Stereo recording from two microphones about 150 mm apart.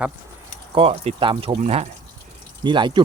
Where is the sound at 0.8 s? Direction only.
40° right (ahead or behind).